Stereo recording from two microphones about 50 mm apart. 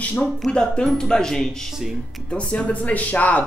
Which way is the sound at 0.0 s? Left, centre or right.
Left.